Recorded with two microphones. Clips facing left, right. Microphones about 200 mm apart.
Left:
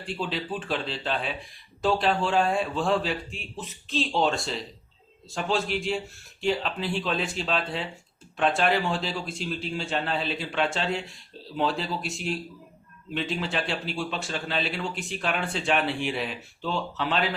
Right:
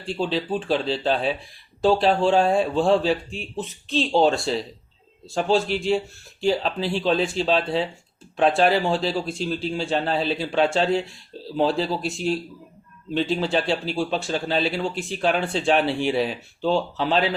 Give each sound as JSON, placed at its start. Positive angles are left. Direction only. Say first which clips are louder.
{"t": 0.2, "sound": "speech", "louder": "right 8 dB", "side_deg": -30}